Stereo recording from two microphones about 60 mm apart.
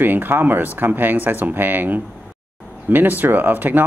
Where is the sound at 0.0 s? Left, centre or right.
Right.